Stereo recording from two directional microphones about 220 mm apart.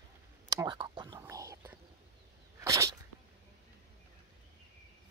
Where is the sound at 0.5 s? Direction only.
20° right (ahead or behind).